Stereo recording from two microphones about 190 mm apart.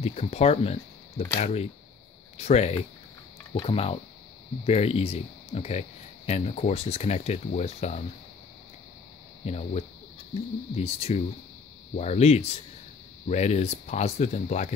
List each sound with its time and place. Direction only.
0.0 s speech: 30° left (ahead or behind)
9.4 s speech: 35° left (ahead or behind)